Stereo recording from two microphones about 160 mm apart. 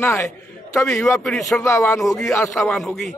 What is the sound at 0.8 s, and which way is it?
Speech, centre (ahead or behind).